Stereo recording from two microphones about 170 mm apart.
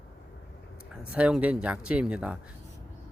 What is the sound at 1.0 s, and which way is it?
Speech, 5° right (ahead or behind).